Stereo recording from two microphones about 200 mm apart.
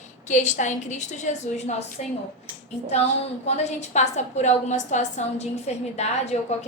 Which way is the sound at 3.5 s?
35° left (ahead or behind).